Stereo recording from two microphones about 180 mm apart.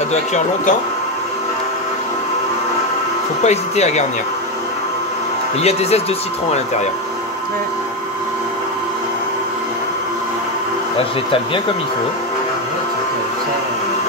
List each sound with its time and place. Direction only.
0.1 s speech: 40° left (ahead or behind)
3.4 s speech: 40° left (ahead or behind)
5.6 s speech: 35° left (ahead or behind)